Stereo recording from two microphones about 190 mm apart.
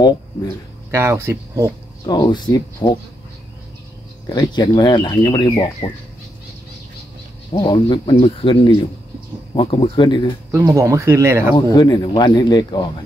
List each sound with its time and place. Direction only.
0.9 s speech: 15° right (ahead or behind)
2.0 s speech: 20° left (ahead or behind)
4.3 s speech: 25° left (ahead or behind)
7.5 s speech: 25° left (ahead or behind)
10.5 s speech: 15° right (ahead or behind)
11.7 s speech: 20° left (ahead or behind)